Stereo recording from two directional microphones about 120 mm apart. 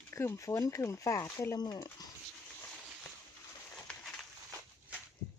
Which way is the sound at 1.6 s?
35° left (ahead or behind).